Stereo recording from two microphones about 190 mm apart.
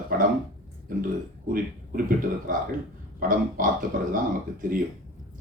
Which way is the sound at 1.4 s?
50° right (ahead or behind).